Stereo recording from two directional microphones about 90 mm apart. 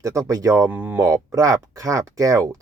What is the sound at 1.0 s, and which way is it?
Speech, 40° right (ahead or behind).